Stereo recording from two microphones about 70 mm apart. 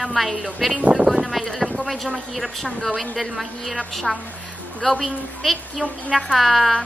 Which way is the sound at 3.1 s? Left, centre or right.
Centre.